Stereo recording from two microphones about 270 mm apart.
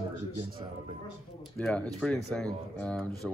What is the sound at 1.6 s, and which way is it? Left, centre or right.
Speech, centre.